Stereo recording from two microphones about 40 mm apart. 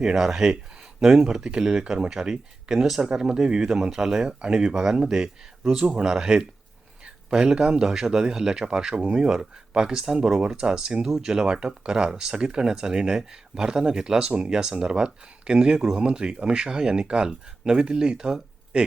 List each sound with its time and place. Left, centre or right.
0.0 s speech: centre
3.0 s speech: centre
4.3 s speech: right